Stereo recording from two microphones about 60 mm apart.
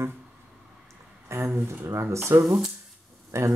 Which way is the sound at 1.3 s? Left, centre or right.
Right.